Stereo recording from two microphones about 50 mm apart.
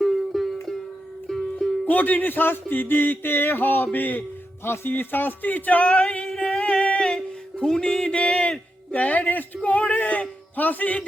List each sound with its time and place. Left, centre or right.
0.0 s music: centre
1.8 s music: left
4.6 s music: left; by 8.5 s centre
8.9 s music: left
9.6 s a man's voice: left